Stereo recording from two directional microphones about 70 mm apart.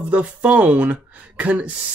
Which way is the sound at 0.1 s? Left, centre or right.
Centre.